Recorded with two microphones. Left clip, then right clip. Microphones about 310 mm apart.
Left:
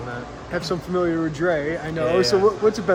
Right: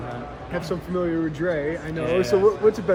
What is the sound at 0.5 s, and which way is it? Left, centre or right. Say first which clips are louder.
Speech: left 3 dB; left.